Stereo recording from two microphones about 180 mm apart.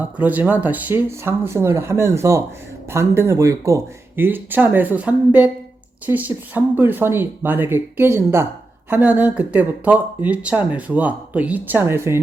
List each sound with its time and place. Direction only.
0.0 s speech: 10° right (ahead or behind)